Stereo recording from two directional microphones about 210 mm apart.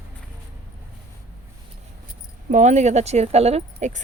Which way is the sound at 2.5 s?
35° right (ahead or behind).